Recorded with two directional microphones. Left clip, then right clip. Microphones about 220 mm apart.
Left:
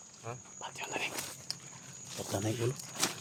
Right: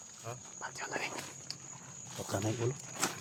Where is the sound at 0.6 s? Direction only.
Centre (ahead or behind).